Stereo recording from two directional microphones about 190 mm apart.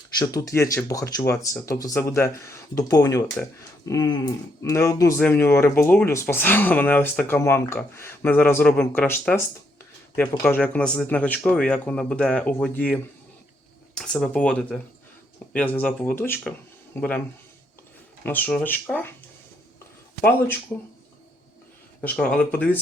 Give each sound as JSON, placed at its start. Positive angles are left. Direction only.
{"t": 0.2, "sound": "speech", "side_deg": 20}
{"t": 3.8, "sound": "a sound", "side_deg": 20}
{"t": 4.6, "sound": "speech", "side_deg": 15}
{"t": 10.4, "sound": "speech", "side_deg": 10}
{"t": 22.0, "sound": "speech", "side_deg": 5}